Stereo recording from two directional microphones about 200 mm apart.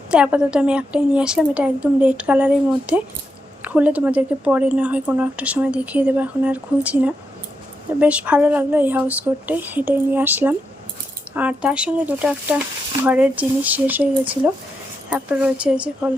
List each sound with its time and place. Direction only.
0.1 s a woman's voice: 5° right (ahead or behind)
15.1 s a woman's voice: 5° right (ahead or behind)